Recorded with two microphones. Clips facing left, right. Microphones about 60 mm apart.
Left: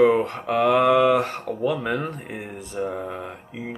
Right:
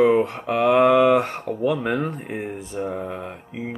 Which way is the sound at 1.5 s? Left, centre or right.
Right.